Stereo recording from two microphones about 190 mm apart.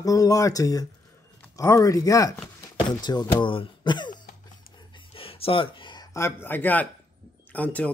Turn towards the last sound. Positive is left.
turn(degrees=10)  # may be behind; listen again after turning